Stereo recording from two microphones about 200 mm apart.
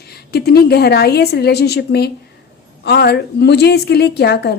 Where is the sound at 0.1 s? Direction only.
50° left (ahead or behind).